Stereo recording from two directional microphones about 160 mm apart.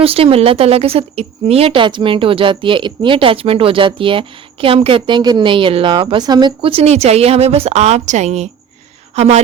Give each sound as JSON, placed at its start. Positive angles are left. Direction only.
{"t": 0.0, "sound": "a woman's voice", "side_deg": -35}